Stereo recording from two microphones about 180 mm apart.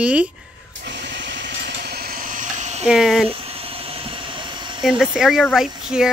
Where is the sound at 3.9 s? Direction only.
30° right (ahead or behind).